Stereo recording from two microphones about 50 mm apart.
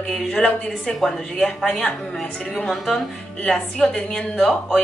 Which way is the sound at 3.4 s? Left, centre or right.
Centre.